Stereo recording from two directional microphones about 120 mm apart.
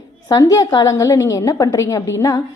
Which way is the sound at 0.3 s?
30° left (ahead or behind).